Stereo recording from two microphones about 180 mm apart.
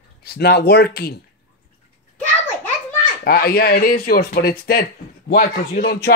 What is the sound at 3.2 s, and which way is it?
Speech, 55° left (ahead or behind).